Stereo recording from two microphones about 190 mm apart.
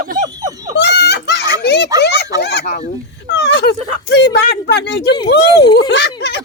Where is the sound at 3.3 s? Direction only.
65° left (ahead or behind).